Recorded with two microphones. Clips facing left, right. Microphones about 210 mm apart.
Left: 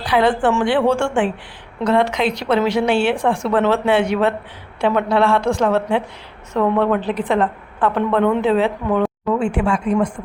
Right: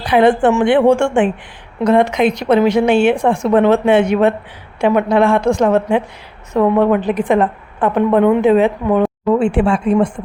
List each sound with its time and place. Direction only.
0.1 s a woman's voice: 20° right (ahead or behind)
9.3 s a woman's voice: 30° right (ahead or behind)